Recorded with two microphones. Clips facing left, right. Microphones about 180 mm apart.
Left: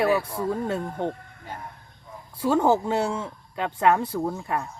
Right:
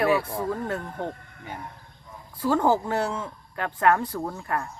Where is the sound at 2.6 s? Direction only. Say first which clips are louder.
Left 1 dB; 25° left (ahead or behind).